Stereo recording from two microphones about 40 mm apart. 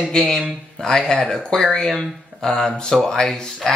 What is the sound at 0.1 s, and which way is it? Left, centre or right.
Speech, centre.